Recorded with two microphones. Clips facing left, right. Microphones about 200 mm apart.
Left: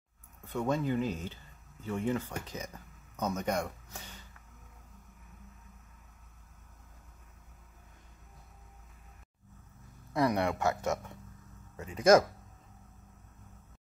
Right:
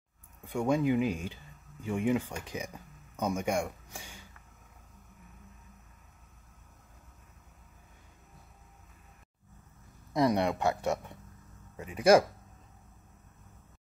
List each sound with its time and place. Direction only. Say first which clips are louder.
0.4 s speech: right 3 dB; 15° right (ahead or behind)
10.1 s speech: right 2 dB; 20° right (ahead or behind)